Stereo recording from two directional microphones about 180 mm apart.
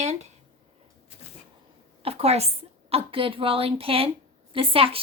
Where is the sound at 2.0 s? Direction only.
35° right (ahead or behind).